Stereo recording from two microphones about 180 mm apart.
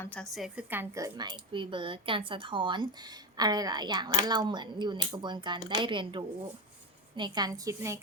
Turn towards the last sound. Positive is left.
turn(degrees=-15)  # may be behind; listen again after turning